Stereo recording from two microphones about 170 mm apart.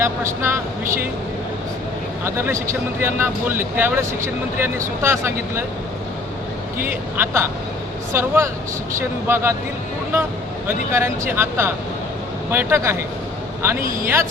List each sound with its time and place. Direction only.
0.0 s speech: 15° right (ahead or behind)
2.2 s speech: 15° right (ahead or behind)
6.8 s speech: 15° right (ahead or behind)
10.7 s speech: 15° right (ahead or behind)
14.0 s speech: 15° right (ahead or behind)